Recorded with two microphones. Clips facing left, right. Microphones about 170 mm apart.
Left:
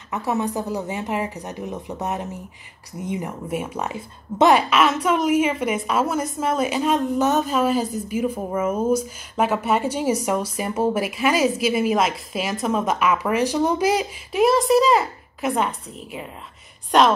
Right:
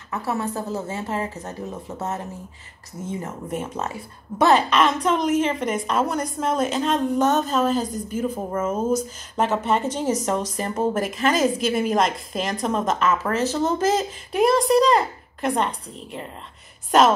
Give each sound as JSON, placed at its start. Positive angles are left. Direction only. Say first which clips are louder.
{"t": 0.1, "sound": "a woman's voice", "louder": "left 2 dB", "side_deg": 20}